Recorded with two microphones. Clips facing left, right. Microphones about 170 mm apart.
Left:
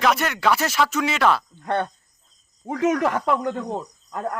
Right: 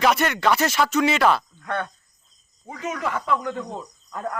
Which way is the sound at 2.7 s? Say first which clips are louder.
Left 7 dB; 85° left.